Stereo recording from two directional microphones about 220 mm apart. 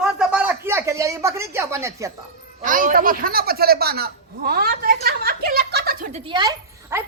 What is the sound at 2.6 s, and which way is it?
A man's voice, 35° right (ahead or behind).